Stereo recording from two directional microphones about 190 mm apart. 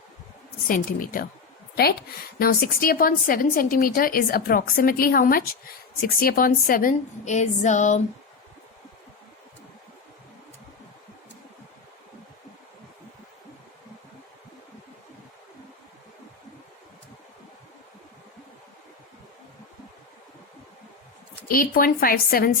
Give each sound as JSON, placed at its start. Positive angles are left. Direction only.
{"t": 0.7, "sound": "a woman's voice", "side_deg": 45}
{"t": 21.4, "sound": "a woman's voice", "side_deg": 50}